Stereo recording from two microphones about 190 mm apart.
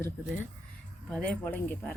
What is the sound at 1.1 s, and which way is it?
Speech, 5° left (ahead or behind).